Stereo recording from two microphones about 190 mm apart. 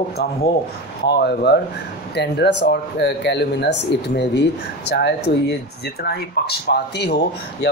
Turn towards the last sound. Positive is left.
turn(degrees=60)  # may be behind; listen again after turning